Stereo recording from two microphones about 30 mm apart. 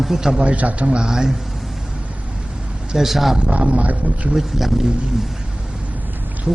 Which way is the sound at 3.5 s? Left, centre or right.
Right.